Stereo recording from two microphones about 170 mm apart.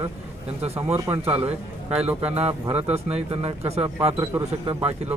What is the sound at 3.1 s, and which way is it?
Speech, 35° right (ahead or behind).